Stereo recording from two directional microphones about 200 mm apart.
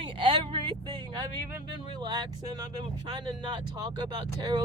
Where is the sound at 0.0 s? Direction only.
25° right (ahead or behind).